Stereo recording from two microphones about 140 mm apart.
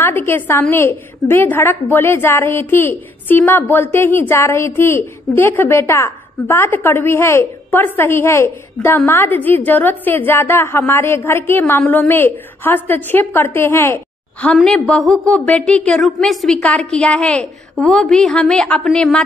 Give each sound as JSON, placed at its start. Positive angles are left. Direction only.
{"t": 0.0, "sound": "a woman's voice", "side_deg": 15}